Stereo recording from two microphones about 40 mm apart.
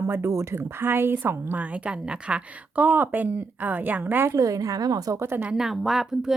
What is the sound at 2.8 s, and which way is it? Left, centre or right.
A woman's voice, right.